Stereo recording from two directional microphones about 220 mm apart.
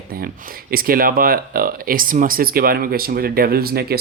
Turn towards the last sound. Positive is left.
turn(degrees=-45)  # may be behind; listen again after turning